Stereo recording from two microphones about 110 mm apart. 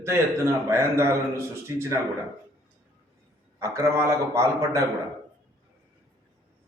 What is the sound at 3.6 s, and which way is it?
A man's voice, 25° right (ahead or behind).